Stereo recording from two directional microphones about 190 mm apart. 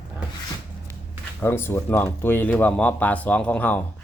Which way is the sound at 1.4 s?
10° left (ahead or behind).